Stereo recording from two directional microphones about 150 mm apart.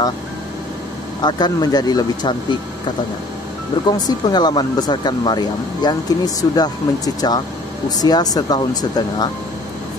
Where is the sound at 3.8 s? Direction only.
25° left (ahead or behind).